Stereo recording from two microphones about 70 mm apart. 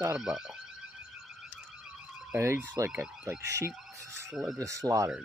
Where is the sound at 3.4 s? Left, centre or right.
Right.